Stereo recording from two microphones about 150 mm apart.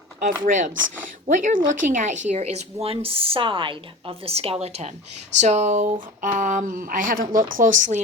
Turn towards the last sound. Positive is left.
turn(degrees=-60)  # may be behind; listen again after turning